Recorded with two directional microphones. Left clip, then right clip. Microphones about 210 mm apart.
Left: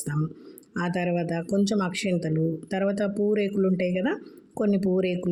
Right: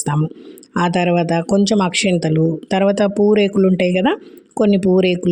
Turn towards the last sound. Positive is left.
turn(degrees=-40)  # may be behind; listen again after turning